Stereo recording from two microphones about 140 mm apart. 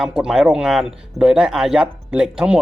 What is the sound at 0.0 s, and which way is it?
Speech, 5° right (ahead or behind).